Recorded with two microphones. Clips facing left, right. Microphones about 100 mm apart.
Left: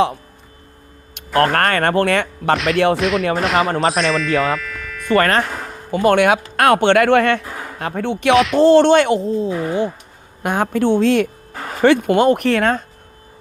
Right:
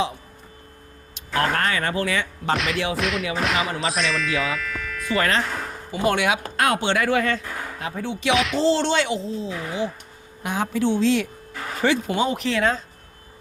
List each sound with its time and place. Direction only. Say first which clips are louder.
1.1 s speech: left 7 dB; 60° left (ahead or behind)
2.9 s speech: left 8 dB; centre (ahead or behind)
3.7 s speech: left 9 dB; 40° left (ahead or behind)
3.9 s speech: left 7 dB; centre (ahead or behind)
4.4 s music: left 6 dB; centre (ahead or behind)
5.0 s speech: left 7 dB; 55° left (ahead or behind)